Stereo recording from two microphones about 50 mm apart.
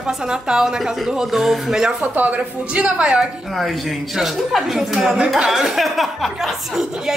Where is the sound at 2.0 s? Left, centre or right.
Right.